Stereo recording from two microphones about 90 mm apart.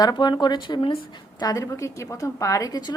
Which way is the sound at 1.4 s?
45° left (ahead or behind).